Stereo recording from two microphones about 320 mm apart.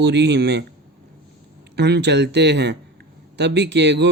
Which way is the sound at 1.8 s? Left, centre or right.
Right.